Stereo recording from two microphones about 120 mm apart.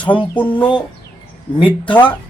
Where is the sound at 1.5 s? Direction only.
40° left (ahead or behind).